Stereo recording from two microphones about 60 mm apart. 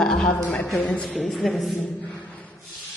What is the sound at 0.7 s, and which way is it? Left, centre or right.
Speech, left.